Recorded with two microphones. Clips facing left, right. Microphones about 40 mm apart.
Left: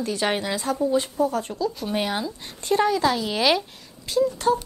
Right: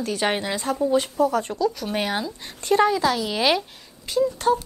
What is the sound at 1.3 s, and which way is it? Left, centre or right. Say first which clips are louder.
Speech: right 3 dB; right.